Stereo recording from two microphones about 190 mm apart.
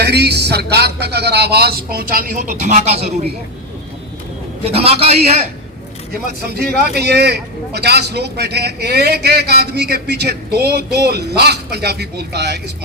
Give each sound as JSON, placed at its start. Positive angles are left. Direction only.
{"t": 0.0, "sound": "a man's voice", "side_deg": -60}
{"t": 4.7, "sound": "a man's voice", "side_deg": -30}
{"t": 6.4, "sound": "a man's voice", "side_deg": -55}